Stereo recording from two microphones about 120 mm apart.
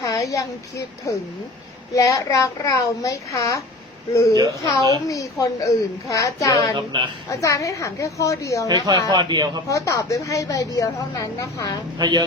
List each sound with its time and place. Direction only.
0.0 s a child's voice: 30° left (ahead or behind)
6.7 s speech: 40° right (ahead or behind)
7.3 s a child's voice: 25° left (ahead or behind)
8.6 s a man's voice: 30° right (ahead or behind)
9.6 s a child's voice: 25° left (ahead or behind)
11.9 s a man's voice: 35° right (ahead or behind)